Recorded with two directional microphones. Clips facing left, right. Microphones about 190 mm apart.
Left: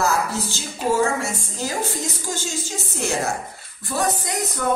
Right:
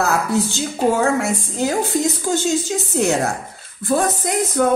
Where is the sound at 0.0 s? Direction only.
60° right (ahead or behind).